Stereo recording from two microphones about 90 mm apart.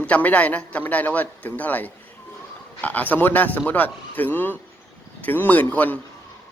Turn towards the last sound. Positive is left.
turn(degrees=20)  # may be behind; listen again after turning